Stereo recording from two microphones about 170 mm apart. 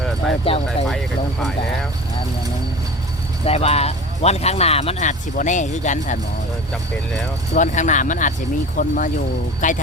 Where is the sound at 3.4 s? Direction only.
35° left (ahead or behind).